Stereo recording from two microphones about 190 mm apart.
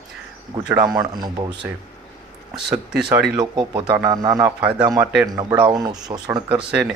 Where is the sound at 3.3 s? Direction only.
20° right (ahead or behind).